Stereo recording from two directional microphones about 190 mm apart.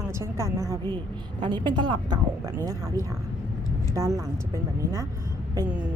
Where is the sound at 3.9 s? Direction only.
15° right (ahead or behind).